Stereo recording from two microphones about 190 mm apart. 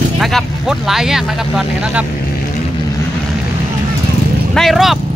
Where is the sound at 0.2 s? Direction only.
Centre (ahead or behind).